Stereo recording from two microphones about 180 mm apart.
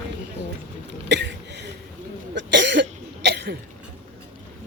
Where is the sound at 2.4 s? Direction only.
75° right (ahead or behind).